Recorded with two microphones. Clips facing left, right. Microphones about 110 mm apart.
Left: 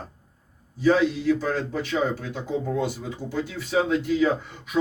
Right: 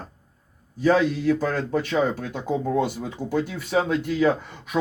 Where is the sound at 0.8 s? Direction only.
50° right (ahead or behind).